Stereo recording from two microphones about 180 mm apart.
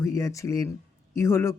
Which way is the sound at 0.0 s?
15° left (ahead or behind).